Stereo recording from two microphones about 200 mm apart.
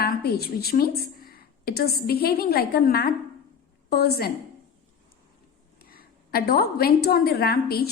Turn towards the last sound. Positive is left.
turn(degrees=50)  # may be behind; listen again after turning